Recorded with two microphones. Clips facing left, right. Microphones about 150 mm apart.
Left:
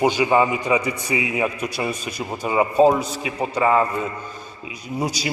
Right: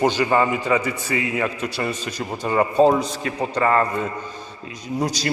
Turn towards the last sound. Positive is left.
turn(degrees=10)  # may be behind; listen again after turning